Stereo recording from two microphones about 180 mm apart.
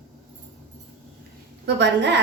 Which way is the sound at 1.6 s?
75° right (ahead or behind).